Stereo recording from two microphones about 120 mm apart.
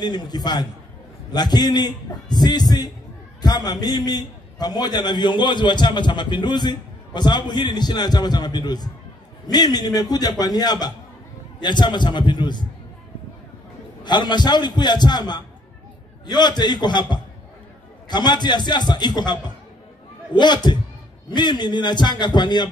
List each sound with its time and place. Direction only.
0.0 s a man's voice: 35° left (ahead or behind)
14.0 s a man's voice: 35° left (ahead or behind)